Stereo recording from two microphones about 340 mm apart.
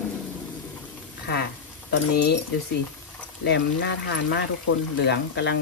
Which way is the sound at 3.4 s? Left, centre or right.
Left.